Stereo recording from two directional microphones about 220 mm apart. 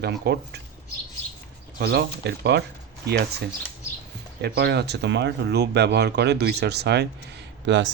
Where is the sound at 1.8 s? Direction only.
45° right (ahead or behind).